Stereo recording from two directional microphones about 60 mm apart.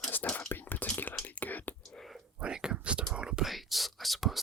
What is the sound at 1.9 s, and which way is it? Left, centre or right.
Whispering, centre.